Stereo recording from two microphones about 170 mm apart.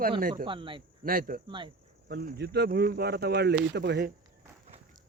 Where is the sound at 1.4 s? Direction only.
30° right (ahead or behind).